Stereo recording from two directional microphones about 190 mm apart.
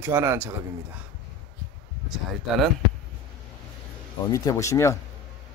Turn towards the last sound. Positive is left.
turn(degrees=15)  # may be behind; listen again after turning